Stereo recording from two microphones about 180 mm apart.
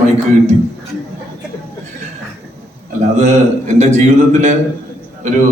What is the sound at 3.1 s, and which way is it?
A woman's voice, 40° right (ahead or behind).